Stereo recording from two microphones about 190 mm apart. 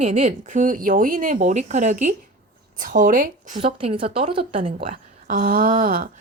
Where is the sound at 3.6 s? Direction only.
30° right (ahead or behind).